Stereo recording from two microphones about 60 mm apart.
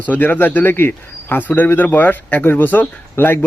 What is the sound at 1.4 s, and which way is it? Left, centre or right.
A man's voice, left.